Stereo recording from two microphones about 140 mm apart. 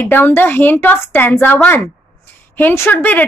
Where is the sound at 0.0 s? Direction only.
15° left (ahead or behind).